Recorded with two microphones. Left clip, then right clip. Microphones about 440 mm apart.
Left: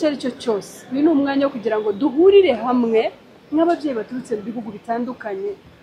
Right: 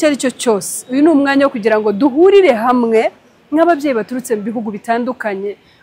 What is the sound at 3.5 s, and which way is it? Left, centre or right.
A woman's voice, right.